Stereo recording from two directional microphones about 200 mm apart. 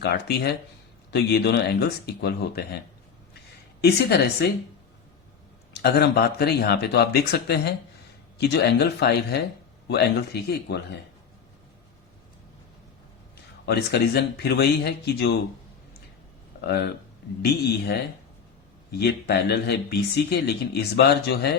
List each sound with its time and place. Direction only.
0.0 s speech: 55° left (ahead or behind)
5.8 s speech: 55° left (ahead or behind)
13.7 s speech: 55° left (ahead or behind)
16.6 s speech: 55° left (ahead or behind)